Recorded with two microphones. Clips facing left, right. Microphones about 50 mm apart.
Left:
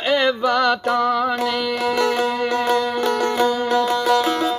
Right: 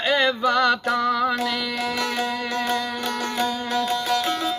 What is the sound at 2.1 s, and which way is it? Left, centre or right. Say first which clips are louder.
Music: left 5 dB; left.